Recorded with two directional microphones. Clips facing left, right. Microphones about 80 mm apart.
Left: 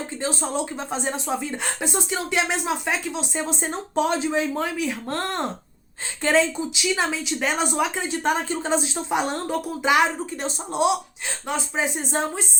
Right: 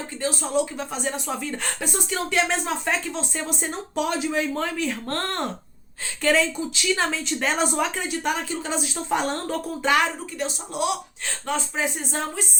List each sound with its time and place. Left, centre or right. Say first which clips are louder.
0.2 s speech: right 3 dB; left; by 3.2 s centre
3.3 s speech: left 2 dB; left
4.5 s speech: left 1 dB; centre
6.2 s speech: left 1 dB; left
6.7 s speech: even; centre
7.9 s speech: left 2 dB; left
9.0 s speech: right 2 dB; centre
10.4 s speech: left 3 dB; left